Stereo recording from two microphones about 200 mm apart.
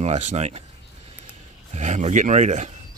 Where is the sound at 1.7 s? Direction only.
35° right (ahead or behind).